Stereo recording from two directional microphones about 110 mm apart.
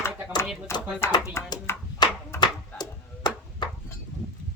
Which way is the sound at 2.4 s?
40° left (ahead or behind).